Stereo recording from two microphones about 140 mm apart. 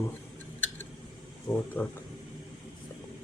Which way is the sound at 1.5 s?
10° left (ahead or behind).